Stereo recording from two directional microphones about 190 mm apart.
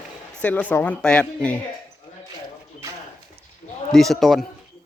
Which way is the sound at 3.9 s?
Centre (ahead or behind).